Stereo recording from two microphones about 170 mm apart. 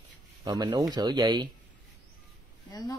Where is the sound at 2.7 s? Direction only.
20° left (ahead or behind).